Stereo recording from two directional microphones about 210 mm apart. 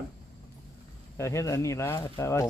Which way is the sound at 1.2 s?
15° left (ahead or behind).